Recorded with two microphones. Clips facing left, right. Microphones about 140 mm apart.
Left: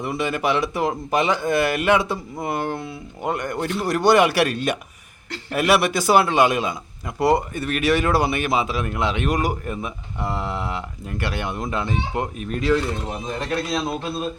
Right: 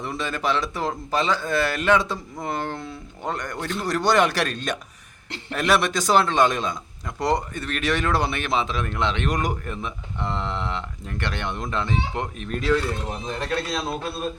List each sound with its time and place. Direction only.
0.0 s speech: 10° left (ahead or behind)
12.7 s speech: 15° left (ahead or behind)